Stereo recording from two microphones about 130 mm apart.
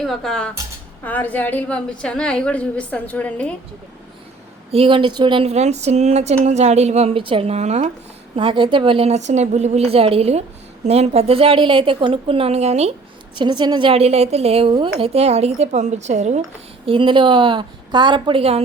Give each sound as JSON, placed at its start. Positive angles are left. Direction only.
{"t": 0.0, "sound": "a woman's voice", "side_deg": 0}
{"t": 4.7, "sound": "a woman's voice", "side_deg": -45}
{"t": 5.5, "sound": "speech", "side_deg": -60}
{"t": 8.4, "sound": "a woman's voice", "side_deg": -40}
{"t": 13.3, "sound": "a woman's voice", "side_deg": -35}
{"t": 16.8, "sound": "a woman's voice", "side_deg": -40}